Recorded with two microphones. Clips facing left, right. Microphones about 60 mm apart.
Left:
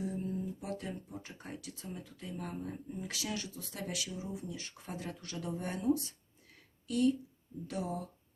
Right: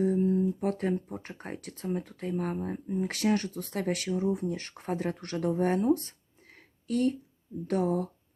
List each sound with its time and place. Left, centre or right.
0.0 s speech: right